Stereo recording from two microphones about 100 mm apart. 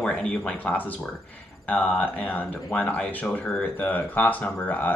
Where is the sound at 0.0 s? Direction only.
10° left (ahead or behind).